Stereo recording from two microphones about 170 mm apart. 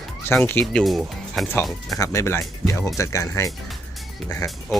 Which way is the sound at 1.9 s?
20° left (ahead or behind).